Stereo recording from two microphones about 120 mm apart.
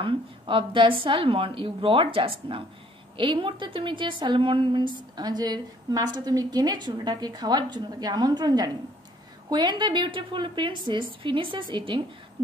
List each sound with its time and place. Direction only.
0.0 s a woman's voice: 45° right (ahead or behind)